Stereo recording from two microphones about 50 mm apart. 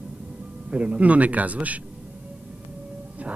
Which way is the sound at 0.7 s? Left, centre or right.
Right.